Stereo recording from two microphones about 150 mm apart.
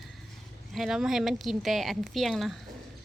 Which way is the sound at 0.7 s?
Centre (ahead or behind).